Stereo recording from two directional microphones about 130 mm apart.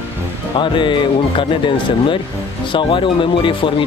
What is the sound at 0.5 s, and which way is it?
Speech, 40° left (ahead or behind).